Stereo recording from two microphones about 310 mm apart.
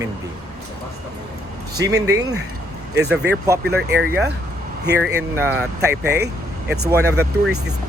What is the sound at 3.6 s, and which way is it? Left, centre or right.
Speech, right.